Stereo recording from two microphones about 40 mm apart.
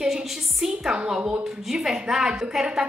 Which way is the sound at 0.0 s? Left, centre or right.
Centre.